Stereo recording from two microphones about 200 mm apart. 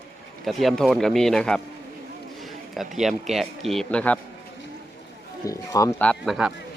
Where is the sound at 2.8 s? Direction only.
Centre (ahead or behind).